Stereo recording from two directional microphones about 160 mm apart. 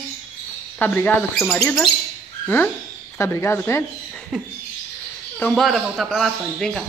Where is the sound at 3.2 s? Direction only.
15° left (ahead or behind).